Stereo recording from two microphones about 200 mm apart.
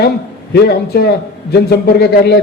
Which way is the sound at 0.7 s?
55° left (ahead or behind).